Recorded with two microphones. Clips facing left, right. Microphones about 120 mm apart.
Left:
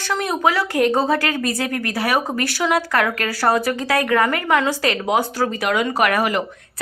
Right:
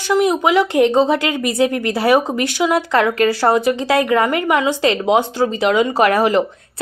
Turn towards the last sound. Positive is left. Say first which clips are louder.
# right 5 dB
turn(degrees=-30)  # may be behind; listen again after turning